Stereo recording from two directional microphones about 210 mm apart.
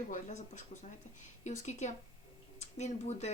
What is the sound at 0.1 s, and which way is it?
Speech, 35° left (ahead or behind).